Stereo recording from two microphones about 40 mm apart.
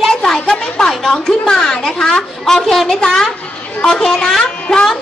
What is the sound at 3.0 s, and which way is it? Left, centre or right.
A woman's voice, centre.